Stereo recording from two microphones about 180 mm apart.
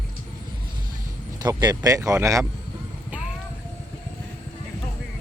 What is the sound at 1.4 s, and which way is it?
Speech, 20° right (ahead or behind).